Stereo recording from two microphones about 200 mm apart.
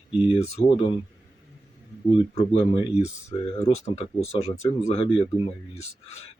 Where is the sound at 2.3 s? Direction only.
30° left (ahead or behind).